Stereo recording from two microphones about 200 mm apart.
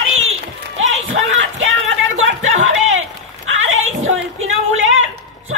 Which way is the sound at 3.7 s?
85° right.